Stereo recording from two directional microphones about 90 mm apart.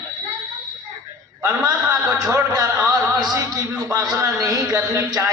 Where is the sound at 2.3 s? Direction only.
40° right (ahead or behind).